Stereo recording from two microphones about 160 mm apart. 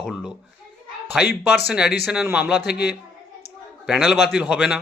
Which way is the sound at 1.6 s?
5° right (ahead or behind).